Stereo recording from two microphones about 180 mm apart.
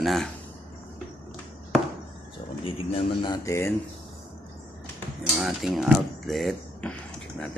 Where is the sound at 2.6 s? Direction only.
30° left (ahead or behind); by 3.7 s 15° left (ahead or behind).